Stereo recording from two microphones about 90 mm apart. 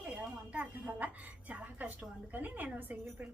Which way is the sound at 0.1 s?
15° right (ahead or behind).